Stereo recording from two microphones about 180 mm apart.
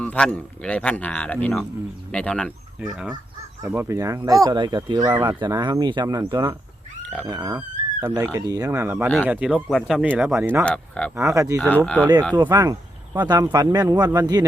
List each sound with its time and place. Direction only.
0.0 s speech: 5° left (ahead or behind); by 6.6 s 20° right (ahead or behind)
7.0 s dog: 5° left (ahead or behind)
7.3 s speech: 20° right (ahead or behind)
10.7 s speech: 5° left (ahead or behind)
11.1 s speech: 15° right (ahead or behind)
11.7 s speech: 5° left (ahead or behind)
12.4 s speech: 20° right (ahead or behind)